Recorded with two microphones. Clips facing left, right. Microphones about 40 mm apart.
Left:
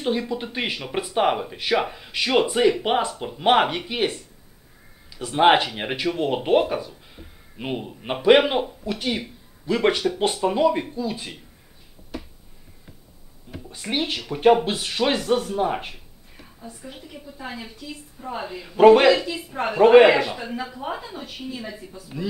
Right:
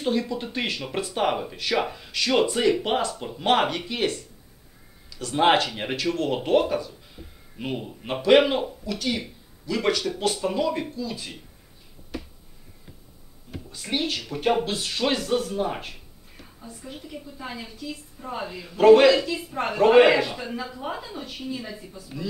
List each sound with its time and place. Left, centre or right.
0.0 s speech: centre
13.7 s speech: centre